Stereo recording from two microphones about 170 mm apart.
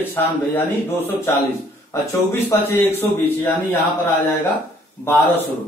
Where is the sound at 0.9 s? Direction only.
10° left (ahead or behind).